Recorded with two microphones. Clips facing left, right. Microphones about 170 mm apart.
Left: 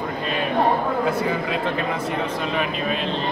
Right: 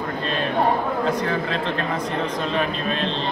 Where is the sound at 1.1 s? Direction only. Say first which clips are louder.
Even; 10° left (ahead or behind).